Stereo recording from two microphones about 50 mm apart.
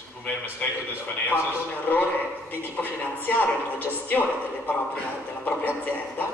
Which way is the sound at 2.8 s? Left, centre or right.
Left.